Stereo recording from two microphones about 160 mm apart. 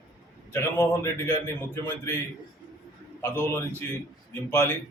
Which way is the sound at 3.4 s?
15° left (ahead or behind).